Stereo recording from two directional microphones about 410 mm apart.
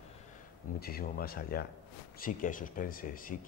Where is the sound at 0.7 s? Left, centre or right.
Left.